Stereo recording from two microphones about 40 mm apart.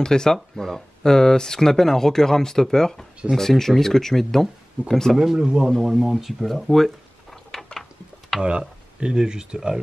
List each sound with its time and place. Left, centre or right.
0.0 s speech: centre
5.1 s speech: centre
8.4 s speech: right